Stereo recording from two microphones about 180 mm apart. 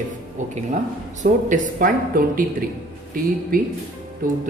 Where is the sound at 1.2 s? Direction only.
45° right (ahead or behind).